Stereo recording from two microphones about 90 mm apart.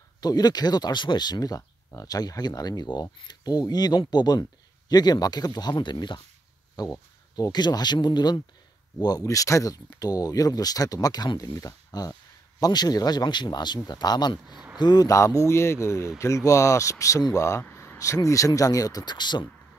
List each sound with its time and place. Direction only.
0.2 s a man's voice: 45° left (ahead or behind)
6.8 s a man's voice: 45° left (ahead or behind)
9.2 s a man's voice: 35° left (ahead or behind)
14.5 s a sound: 10° right (ahead or behind)
14.8 s a man's voice: 55° left (ahead or behind)
15.0 s speech: 35° left (ahead or behind); by 19.4 s 55° left (ahead or behind)